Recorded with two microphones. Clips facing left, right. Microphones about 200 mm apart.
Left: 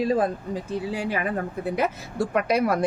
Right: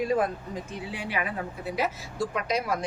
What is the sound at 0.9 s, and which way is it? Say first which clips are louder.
Speech: left 4 dB; 40° left (ahead or behind).